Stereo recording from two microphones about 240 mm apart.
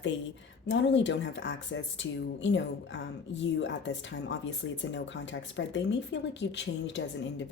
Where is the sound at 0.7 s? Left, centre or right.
Left.